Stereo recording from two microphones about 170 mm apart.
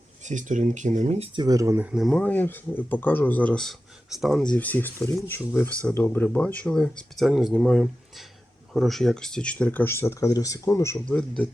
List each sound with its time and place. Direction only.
0.3 s speech: 45° right (ahead or behind)
1.4 s speech: 20° right (ahead or behind)
1.9 s speech: centre (ahead or behind); by 11.2 s 15° left (ahead or behind)